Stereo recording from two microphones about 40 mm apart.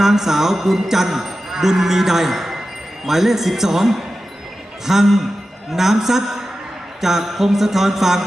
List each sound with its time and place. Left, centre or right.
0.0 s speech: centre
3.1 s mantra: centre